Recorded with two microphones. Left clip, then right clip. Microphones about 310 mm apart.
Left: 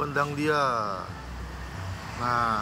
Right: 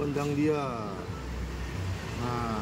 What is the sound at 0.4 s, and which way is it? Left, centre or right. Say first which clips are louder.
Speech: left 4 dB; centre.